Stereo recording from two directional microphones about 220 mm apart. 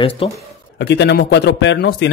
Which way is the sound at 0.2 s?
25° left (ahead or behind).